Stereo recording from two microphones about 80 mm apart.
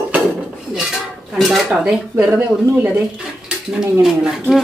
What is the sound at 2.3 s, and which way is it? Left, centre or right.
Speech, right.